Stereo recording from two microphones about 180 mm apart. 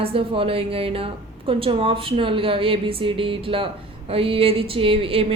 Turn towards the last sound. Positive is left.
turn(degrees=-30)  # may be behind; listen again after turning